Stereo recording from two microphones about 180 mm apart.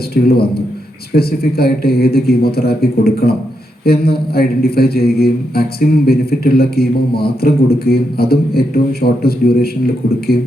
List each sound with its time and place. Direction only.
0.1 s a man's voice: 60° left (ahead or behind)